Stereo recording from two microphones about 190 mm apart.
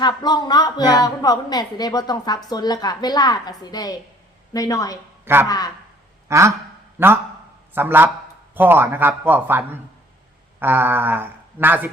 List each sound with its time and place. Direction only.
0.0 s a woman's voice: 20° left (ahead or behind)
5.2 s speech: 10° right (ahead or behind)
5.5 s a woman's voice: 20° left (ahead or behind)
6.2 s a sound: 15° right (ahead or behind)
7.0 s speech: 10° right (ahead or behind)